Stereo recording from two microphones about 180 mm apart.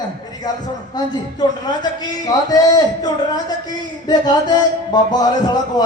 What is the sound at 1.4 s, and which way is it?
A man's voice, 25° left (ahead or behind).